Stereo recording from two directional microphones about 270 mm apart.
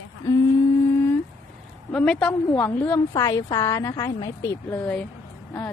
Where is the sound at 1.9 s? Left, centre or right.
Centre.